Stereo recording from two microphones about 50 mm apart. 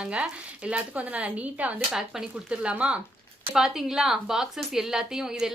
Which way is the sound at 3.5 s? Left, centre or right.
Centre.